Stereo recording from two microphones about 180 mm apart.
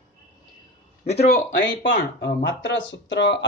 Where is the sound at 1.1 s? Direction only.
75° left (ahead or behind).